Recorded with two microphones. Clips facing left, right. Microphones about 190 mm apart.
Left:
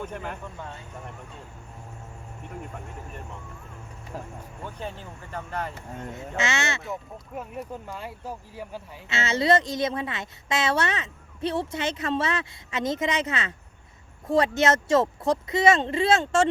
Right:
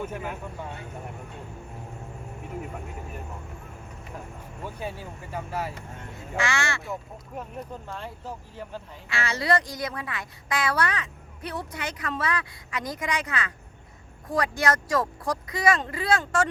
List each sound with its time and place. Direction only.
0.0 s speech: 5° right (ahead or behind)
2.6 s speech: 5° right (ahead or behind)
4.6 s speech: 10° right (ahead or behind)
6.1 s a woman's voice: 20° left (ahead or behind)
6.8 s speech: centre (ahead or behind)
9.0 s a woman's voice: 25° left (ahead or behind)